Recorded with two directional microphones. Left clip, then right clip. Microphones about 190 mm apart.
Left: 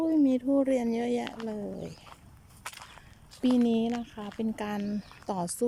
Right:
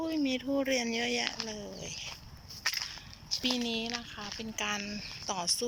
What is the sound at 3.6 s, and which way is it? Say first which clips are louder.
Speech: left 5 dB; 35° left (ahead or behind).